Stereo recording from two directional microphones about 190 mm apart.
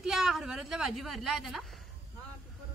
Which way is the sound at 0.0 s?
Centre (ahead or behind).